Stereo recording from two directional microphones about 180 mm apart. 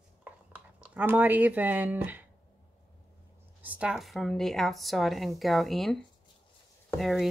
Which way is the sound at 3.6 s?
5° right (ahead or behind).